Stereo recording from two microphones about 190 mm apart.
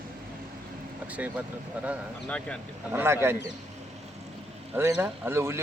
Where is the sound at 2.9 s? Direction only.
15° right (ahead or behind).